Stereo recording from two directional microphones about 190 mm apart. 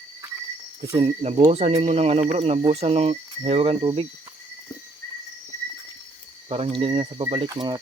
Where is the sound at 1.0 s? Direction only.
35° right (ahead or behind).